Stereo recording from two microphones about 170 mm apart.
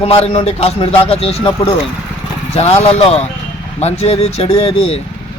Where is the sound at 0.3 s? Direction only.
35° left (ahead or behind).